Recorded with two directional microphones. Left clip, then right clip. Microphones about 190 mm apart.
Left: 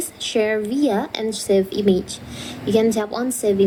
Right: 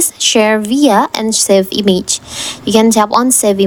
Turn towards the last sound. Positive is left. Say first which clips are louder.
# right 7 dB
turn(degrees=-50)  # may be behind; listen again after turning